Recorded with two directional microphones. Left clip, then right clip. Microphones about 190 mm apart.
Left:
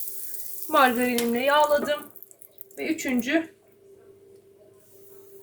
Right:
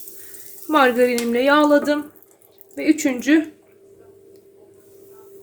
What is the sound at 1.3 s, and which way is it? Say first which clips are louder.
Speech: right 4 dB; 55° right (ahead or behind).